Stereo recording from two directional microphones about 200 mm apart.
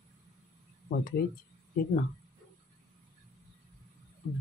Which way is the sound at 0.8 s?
50° left (ahead or behind).